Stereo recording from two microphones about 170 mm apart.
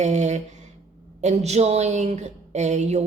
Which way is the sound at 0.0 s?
45° right (ahead or behind).